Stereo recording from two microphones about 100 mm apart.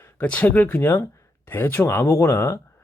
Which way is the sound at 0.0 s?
15° left (ahead or behind).